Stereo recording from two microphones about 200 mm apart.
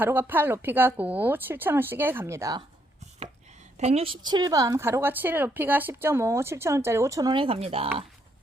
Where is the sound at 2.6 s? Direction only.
35° right (ahead or behind).